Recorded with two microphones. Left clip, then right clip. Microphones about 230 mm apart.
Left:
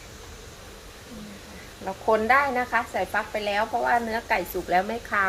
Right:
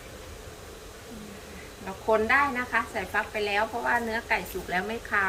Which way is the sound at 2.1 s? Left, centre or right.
Left.